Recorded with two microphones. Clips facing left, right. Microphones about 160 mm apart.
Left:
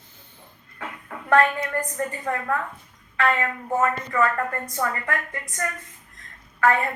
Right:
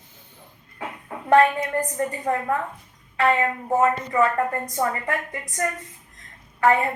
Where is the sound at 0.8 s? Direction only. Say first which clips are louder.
Right 2 dB; 20° right (ahead or behind).